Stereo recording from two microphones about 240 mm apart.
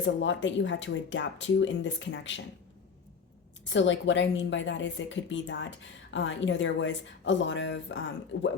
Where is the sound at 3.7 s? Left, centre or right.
Left.